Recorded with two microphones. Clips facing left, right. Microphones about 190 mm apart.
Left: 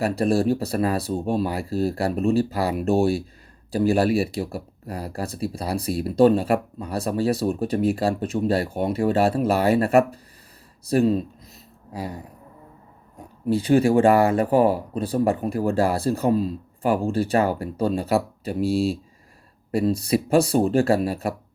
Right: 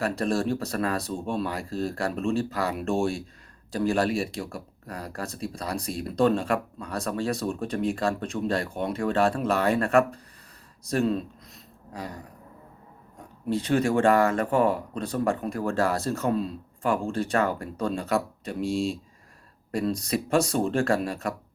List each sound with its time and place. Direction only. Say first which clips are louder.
0.0 s speech: left 5 dB; 10° left (ahead or behind)
1.1 s speech: left 6 dB; 40° left (ahead or behind)
1.4 s speech: left 5 dB; 10° left (ahead or behind)
13.5 s speech: left 6 dB; 10° left (ahead or behind)